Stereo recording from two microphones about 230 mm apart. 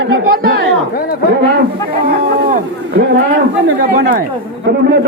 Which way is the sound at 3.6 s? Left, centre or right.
Right.